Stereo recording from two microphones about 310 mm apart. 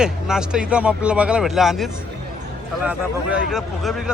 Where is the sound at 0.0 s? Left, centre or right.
Centre.